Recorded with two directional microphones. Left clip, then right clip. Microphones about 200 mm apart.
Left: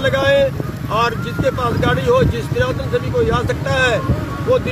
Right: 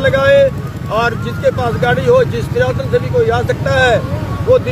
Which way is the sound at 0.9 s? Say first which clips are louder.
Right 2 dB; 10° right (ahead or behind).